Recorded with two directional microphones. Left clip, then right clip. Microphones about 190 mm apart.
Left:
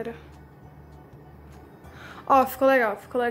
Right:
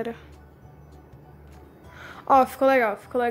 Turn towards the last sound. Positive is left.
turn(degrees=-15)  # may be behind; listen again after turning